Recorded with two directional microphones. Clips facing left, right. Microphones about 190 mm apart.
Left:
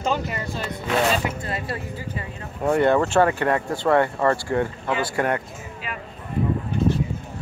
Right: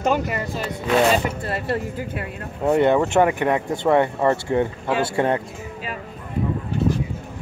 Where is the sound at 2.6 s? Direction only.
20° right (ahead or behind).